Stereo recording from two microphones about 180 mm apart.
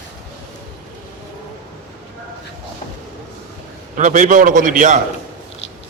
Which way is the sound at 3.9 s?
45° right (ahead or behind).